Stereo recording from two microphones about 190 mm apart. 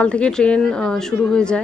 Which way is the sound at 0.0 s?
5° left (ahead or behind).